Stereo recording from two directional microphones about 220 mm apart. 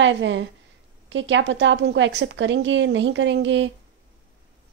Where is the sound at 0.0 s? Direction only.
55° right (ahead or behind).